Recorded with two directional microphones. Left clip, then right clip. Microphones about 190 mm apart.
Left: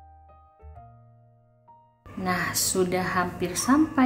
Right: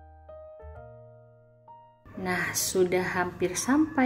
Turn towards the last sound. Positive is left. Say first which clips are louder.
# left 3 dB
turn(degrees=-20)  # may be behind; listen again after turning